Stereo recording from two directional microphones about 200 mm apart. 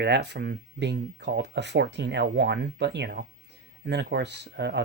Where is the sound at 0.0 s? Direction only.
55° right (ahead or behind).